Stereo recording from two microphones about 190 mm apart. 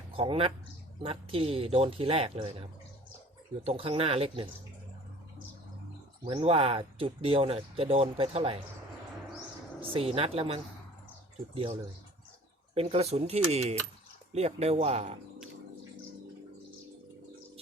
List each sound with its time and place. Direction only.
0.1 s speech: 30° right (ahead or behind)
3.7 s speech: 30° right (ahead or behind)
6.2 s speech: 30° right (ahead or behind)
9.8 s speech: 30° right (ahead or behind)